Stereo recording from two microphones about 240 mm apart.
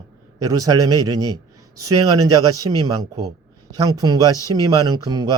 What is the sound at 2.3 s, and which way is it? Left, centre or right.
Speech, centre.